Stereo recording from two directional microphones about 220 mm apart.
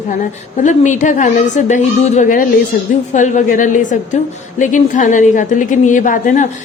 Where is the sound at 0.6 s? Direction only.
35° left (ahead or behind).